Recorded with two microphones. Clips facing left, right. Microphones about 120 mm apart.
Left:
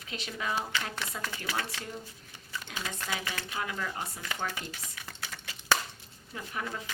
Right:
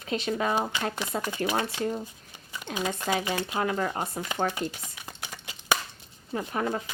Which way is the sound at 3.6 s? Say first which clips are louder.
Right 6 dB; 40° right (ahead or behind).